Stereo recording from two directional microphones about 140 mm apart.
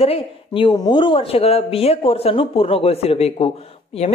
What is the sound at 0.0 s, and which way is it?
A woman's voice, 40° left (ahead or behind).